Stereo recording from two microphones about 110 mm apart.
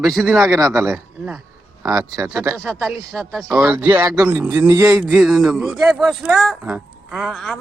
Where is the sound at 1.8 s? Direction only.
30° right (ahead or behind).